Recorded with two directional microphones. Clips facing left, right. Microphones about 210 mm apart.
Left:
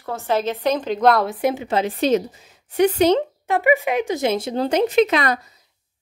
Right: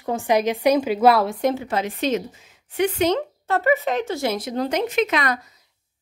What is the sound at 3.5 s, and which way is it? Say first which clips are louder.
Speech: left 2 dB; 15° left (ahead or behind).